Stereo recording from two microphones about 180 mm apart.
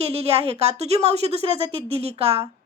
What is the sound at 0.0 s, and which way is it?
Speech, 35° right (ahead or behind).